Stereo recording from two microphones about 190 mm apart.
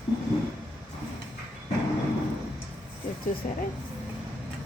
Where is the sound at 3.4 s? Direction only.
45° left (ahead or behind).